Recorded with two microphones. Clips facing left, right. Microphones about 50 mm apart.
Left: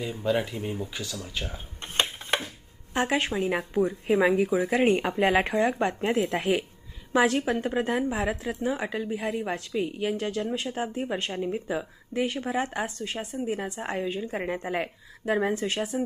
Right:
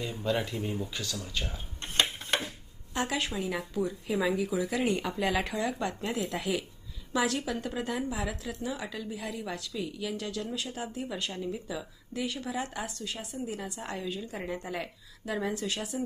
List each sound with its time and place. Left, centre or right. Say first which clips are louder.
0.0 s speech: left 4 dB; centre
1.5 s a sound: left 2 dB; left
2.9 s speech: left 6 dB; left